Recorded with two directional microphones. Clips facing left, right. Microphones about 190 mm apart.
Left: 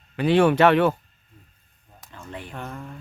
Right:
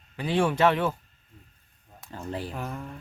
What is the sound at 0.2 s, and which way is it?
Speech, 70° left (ahead or behind).